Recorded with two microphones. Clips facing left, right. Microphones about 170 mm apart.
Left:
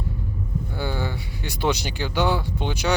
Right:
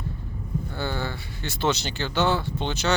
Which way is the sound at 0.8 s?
10° left (ahead or behind).